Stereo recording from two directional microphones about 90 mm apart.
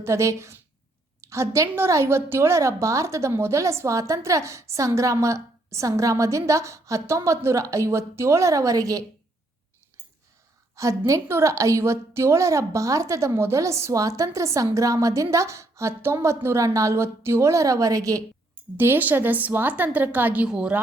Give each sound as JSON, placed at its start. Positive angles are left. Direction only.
{"t": 0.0, "sound": "a woman's voice", "side_deg": -30}
{"t": 10.8, "sound": "a woman's voice", "side_deg": -35}
{"t": 18.8, "sound": "a woman's voice", "side_deg": -20}